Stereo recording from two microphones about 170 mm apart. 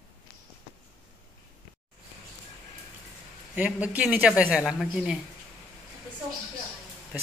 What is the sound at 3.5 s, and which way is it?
Speech, 10° right (ahead or behind).